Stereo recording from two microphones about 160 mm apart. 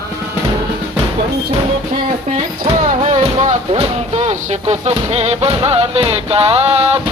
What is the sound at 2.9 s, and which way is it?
Speech, 50° right (ahead or behind).